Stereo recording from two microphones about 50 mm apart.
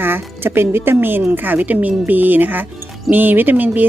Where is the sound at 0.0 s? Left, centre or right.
Right.